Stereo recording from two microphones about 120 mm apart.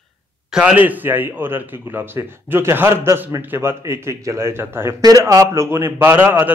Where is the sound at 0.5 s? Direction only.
10° right (ahead or behind).